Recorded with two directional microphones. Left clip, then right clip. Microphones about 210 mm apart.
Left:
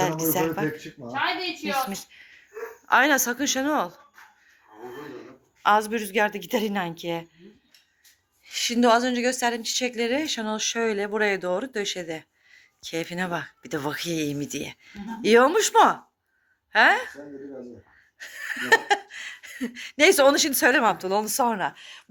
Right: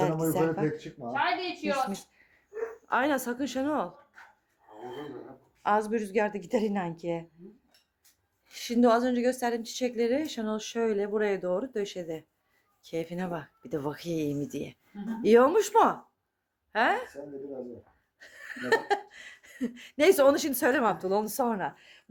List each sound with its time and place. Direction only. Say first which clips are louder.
0.2 s speech: left 2 dB; centre (ahead or behind)
1.0 s a woman's voice: right 1 dB; 30° left (ahead or behind)
1.8 s speech: left 2 dB; centre (ahead or behind)
5.0 s a woman's voice: left 2 dB; 5° right (ahead or behind)
8.4 s speech: left 4 dB; centre (ahead or behind)
18.2 s speech: left 8 dB; 5° right (ahead or behind)